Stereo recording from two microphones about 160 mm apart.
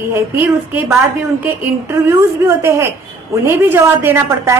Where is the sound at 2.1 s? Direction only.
15° right (ahead or behind).